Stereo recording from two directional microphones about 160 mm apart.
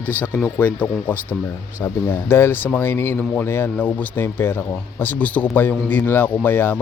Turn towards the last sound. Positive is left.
turn(degrees=15)  # may be behind; listen again after turning